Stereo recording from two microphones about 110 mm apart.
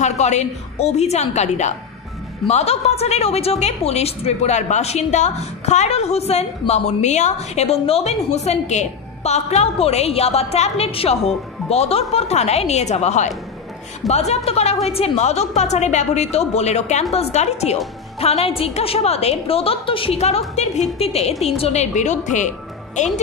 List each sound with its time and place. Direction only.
0.0 s a woman's voice: 90° left
2.4 s a woman's voice: 70° left (ahead or behind)
6.7 s a woman's voice: 90° left
14.0 s a woman's voice: 80° left
18.2 s a woman's voice: 65° left (ahead or behind)
20.2 s a woman's voice: 80° left
21.0 s a woman's voice: 75° left (ahead or behind); by 22.5 s 90° left